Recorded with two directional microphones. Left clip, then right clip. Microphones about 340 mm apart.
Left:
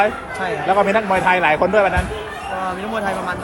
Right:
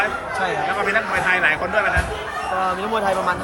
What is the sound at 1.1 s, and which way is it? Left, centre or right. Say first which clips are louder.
Speech: left 4 dB; centre.